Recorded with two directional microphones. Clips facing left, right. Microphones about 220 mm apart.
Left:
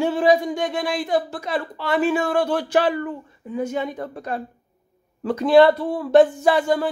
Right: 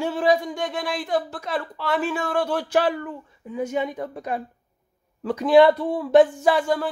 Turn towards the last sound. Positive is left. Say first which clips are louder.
# left 2 dB
turn(degrees=-5)  # may be behind; listen again after turning